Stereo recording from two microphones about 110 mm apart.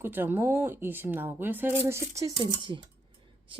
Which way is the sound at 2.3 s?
45° right (ahead or behind).